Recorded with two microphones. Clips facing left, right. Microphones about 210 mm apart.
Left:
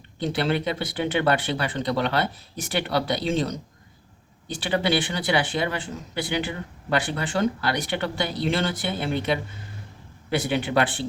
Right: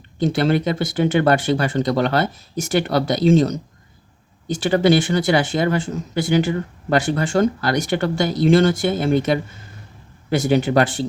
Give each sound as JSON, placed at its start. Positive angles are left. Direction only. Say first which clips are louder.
{"t": 0.2, "sound": "speech", "louder": "right 6 dB", "side_deg": -45}